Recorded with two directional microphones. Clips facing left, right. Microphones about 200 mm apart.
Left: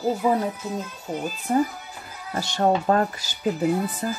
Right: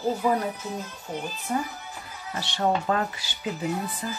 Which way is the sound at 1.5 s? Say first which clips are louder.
Left 7 dB; 35° left (ahead or behind).